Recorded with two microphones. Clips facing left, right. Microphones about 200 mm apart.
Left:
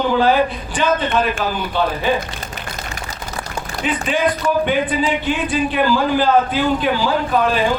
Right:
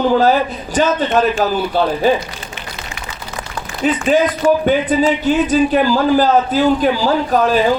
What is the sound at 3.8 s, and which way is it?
A man's voice, 40° right (ahead or behind).